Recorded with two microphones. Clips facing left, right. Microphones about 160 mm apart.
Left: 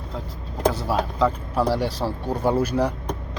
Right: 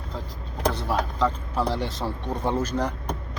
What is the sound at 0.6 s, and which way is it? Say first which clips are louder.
Vehicle: left 3 dB; 5° left (ahead or behind).